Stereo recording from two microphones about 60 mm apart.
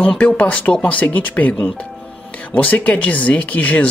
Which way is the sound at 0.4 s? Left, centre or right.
Left.